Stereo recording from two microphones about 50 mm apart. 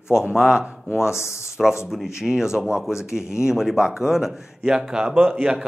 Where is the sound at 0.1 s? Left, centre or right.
Centre.